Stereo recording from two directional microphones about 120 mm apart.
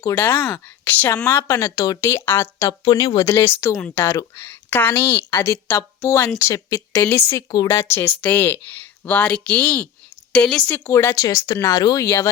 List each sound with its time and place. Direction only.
0.2 s a woman's voice: 15° left (ahead or behind)
2.6 s speech: 35° left (ahead or behind)
3.2 s a woman's voice: 20° left (ahead or behind)
6.4 s a woman's voice: 30° left (ahead or behind); by 10.8 s 5° left (ahead or behind)
10.8 s a woman's voice: 25° left (ahead or behind)